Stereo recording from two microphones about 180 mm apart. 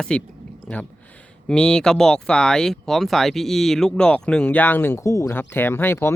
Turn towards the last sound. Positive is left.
turn(degrees=15)  # may be behind; listen again after turning